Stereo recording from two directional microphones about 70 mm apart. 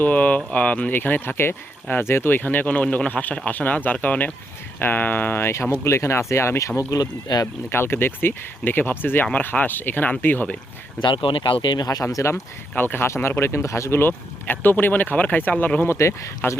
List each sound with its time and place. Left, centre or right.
0.0 s speech: left
7.7 s speech: left
11.7 s speech: left
12.1 s speech: left
12.7 s speech: left
15.9 s speech: left